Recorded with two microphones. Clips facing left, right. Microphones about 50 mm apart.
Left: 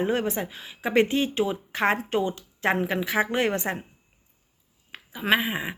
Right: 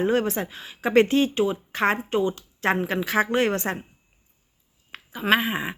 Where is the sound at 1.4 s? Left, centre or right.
Left.